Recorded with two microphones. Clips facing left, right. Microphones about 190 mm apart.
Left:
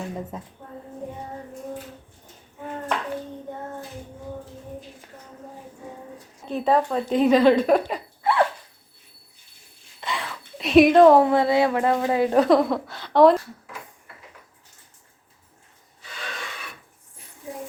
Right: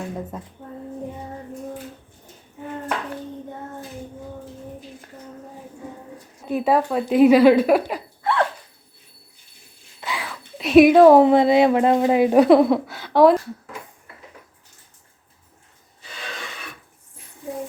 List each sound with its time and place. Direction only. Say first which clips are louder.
0.3 s a woman's voice: right 2 dB; centre (ahead or behind)
6.5 s speech: right 2 dB; 10° right (ahead or behind)
10.0 s a sound: right 1 dB; 5° right (ahead or behind)
11.2 s speech: right 5 dB; 20° right (ahead or behind)